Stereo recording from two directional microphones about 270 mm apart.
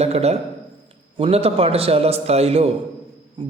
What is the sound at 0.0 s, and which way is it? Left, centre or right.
A man's voice, right.